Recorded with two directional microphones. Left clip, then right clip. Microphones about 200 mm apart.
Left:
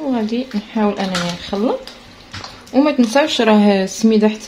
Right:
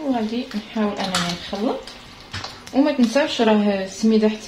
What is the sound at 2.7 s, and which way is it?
Speech, 55° left (ahead or behind).